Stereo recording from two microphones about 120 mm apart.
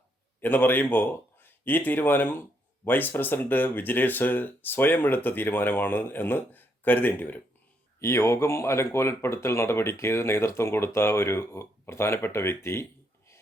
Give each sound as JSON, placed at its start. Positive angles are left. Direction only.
{"t": 0.4, "sound": "speech", "side_deg": 15}